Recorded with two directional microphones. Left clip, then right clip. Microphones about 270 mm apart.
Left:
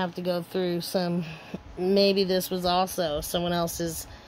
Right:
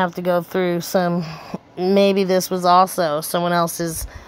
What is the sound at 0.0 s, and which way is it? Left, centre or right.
A woman's voice, right.